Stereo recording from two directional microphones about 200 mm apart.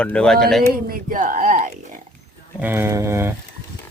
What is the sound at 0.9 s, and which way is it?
Speech, 45° right (ahead or behind).